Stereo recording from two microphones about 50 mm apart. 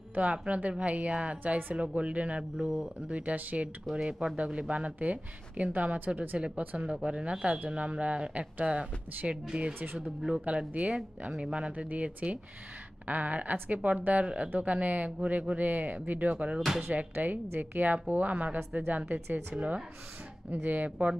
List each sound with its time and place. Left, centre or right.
0.1 s speech: right
3.9 s a woman's voice: centre; by 6.9 s right
7.1 s speech: right
9.9 s speech: centre
10.7 s a woman's voice: right